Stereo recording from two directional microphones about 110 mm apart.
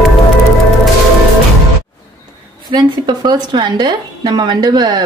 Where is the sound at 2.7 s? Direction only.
40° right (ahead or behind).